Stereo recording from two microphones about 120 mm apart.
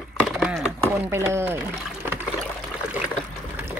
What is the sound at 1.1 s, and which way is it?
Speech, 20° right (ahead or behind).